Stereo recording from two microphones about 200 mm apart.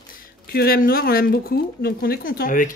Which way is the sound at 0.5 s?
50° left (ahead or behind).